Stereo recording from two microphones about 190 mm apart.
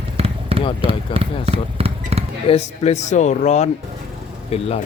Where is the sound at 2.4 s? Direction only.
35° left (ahead or behind).